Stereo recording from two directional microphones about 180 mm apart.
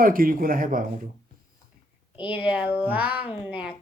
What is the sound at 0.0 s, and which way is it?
Speech, 50° right (ahead or behind).